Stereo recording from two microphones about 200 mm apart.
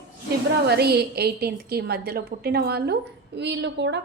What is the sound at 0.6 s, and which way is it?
A woman's voice, 55° right (ahead or behind).